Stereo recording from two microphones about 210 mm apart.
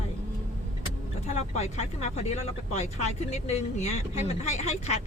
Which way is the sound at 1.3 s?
30° left (ahead or behind).